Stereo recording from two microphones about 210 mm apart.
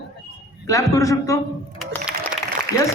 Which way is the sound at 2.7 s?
50° right (ahead or behind).